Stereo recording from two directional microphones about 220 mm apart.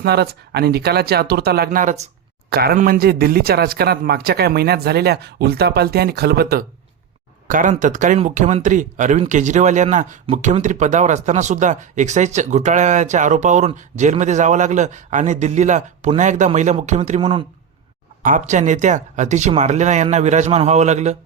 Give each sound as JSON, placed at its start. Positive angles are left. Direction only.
{"t": 0.0, "sound": "speech", "side_deg": -45}
{"t": 18.2, "sound": "speech", "side_deg": -35}